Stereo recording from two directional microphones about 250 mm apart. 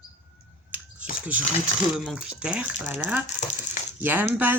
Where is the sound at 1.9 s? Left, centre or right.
Centre.